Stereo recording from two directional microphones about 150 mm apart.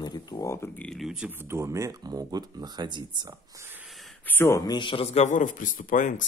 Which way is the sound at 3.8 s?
Centre (ahead or behind).